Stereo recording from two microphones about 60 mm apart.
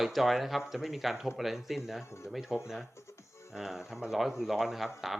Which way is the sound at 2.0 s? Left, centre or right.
Left.